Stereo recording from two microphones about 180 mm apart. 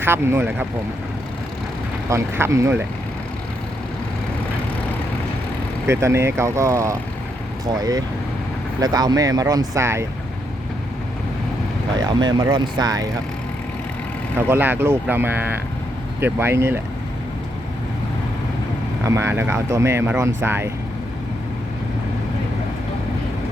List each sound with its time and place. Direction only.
0.0 s speech: 15° right (ahead or behind)
2.0 s speech: 15° right (ahead or behind)
5.9 s speech: 15° right (ahead or behind)
11.9 s speech: 25° right (ahead or behind)
14.3 s speech: 10° right (ahead or behind)
19.0 s speech: 15° right (ahead or behind)